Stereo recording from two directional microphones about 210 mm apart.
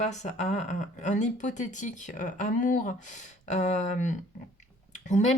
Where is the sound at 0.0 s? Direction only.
35° left (ahead or behind).